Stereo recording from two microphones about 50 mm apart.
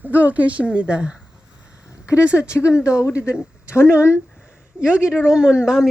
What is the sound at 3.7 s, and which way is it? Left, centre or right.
Speech, left.